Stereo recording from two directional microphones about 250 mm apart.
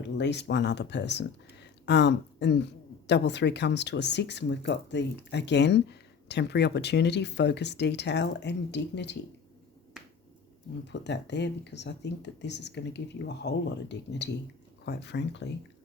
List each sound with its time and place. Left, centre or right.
0.0 s speech: left
10.8 s speech: left